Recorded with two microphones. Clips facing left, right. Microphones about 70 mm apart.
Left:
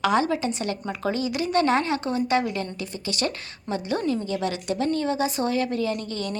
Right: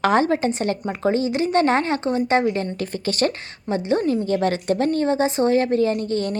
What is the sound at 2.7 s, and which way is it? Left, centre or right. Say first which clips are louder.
Speech: right 6 dB; right.